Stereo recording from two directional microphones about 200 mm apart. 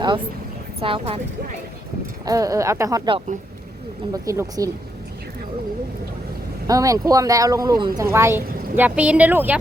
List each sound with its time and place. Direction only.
0.8 s speech: 30° right (ahead or behind)
2.2 s speech: 15° right (ahead or behind)
6.7 s speech: 15° right (ahead or behind)